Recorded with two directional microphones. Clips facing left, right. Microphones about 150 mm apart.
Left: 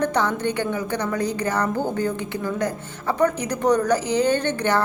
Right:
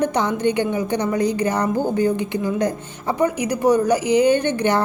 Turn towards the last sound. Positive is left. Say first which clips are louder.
# right 3 dB
turn(degrees=-15)  # may be behind; listen again after turning